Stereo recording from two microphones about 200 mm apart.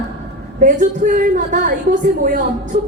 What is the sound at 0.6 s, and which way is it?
A woman's voice, 40° right (ahead or behind).